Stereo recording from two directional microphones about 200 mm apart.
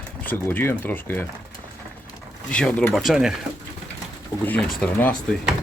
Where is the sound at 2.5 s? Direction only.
5° left (ahead or behind).